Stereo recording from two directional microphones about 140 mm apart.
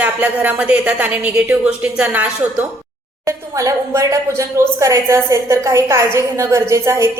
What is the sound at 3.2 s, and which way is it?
Speech, 20° right (ahead or behind).